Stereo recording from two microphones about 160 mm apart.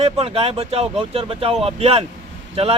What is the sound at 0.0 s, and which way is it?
Speech, 40° right (ahead or behind).